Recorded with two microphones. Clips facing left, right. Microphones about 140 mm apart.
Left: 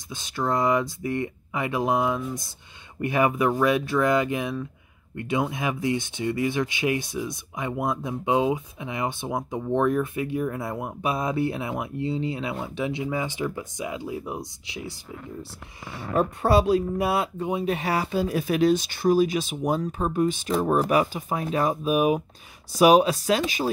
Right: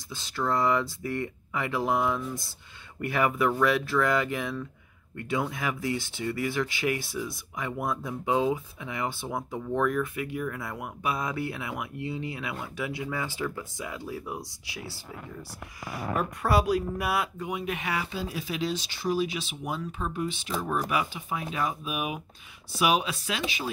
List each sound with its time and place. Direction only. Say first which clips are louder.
0.1 s speech: left 3 dB; 15° left (ahead or behind)
16.2 s speech: left 6 dB; 25° left (ahead or behind)